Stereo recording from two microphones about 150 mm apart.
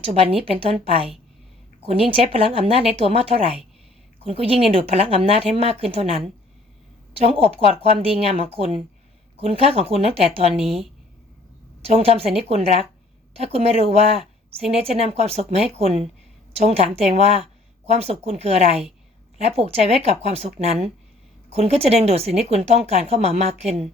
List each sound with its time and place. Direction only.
0.0 s a woman's voice: 40° right (ahead or behind)
11.9 s a woman's voice: 40° right (ahead or behind)